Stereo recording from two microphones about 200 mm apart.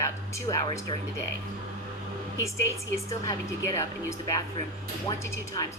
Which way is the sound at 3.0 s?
15° left (ahead or behind).